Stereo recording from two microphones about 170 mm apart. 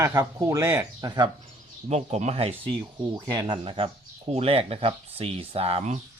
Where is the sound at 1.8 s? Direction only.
40° right (ahead or behind).